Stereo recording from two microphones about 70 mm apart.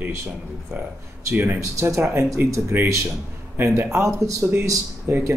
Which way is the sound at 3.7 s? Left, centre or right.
Right.